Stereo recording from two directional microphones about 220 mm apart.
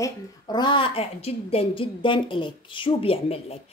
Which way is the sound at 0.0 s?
20° left (ahead or behind).